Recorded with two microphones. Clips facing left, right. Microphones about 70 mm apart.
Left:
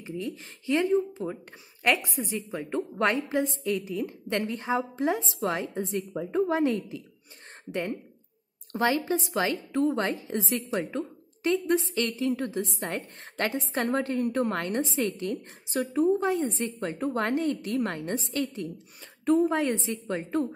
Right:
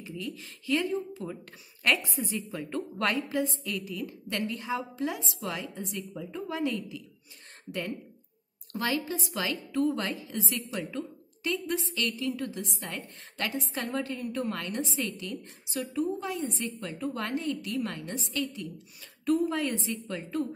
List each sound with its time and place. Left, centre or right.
0.0 s a woman's voice: left
8.7 s a woman's voice: left